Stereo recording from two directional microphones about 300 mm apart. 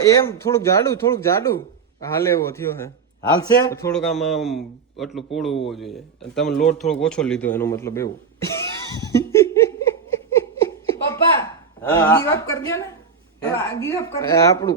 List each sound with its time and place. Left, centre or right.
0.1 s a man's voice: centre
9.0 s giggle: centre
11.9 s speech: centre